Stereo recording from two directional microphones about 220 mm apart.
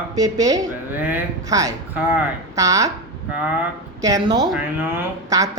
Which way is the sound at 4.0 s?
15° right (ahead or behind).